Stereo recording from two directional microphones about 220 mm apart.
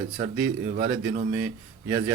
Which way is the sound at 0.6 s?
35° right (ahead or behind).